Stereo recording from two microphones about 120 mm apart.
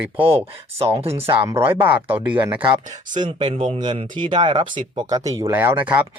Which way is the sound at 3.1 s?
45° right (ahead or behind).